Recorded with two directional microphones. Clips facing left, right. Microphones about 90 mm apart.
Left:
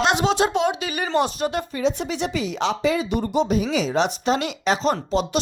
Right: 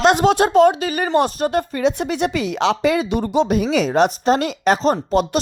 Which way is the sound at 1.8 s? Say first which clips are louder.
Right 2 dB; 60° right (ahead or behind).